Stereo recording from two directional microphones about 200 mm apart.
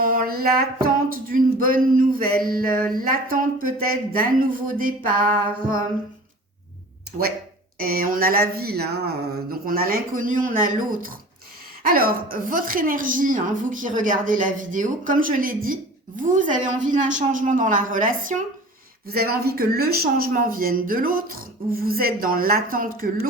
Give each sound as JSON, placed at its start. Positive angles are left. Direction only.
{"t": 0.0, "sound": "music", "side_deg": -45}
{"t": 1.1, "sound": "speech", "side_deg": -45}
{"t": 7.8, "sound": "a woman's voice", "side_deg": -45}